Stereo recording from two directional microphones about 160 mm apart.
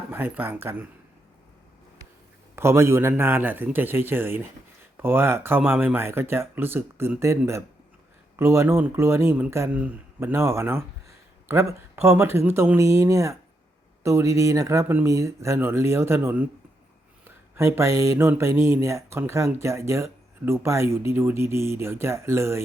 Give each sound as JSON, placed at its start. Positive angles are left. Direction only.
{"t": 0.1, "sound": "speech", "side_deg": -10}
{"t": 2.6, "sound": "speech", "side_deg": -15}